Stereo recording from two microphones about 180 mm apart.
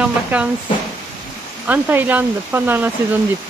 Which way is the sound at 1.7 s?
10° right (ahead or behind).